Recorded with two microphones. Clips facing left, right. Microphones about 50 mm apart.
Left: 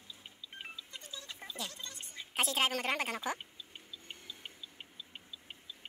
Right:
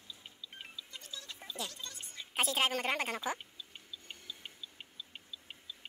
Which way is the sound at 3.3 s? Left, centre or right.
Centre.